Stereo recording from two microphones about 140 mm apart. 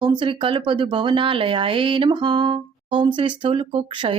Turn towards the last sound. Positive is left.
turn(degrees=-40)  # may be behind; listen again after turning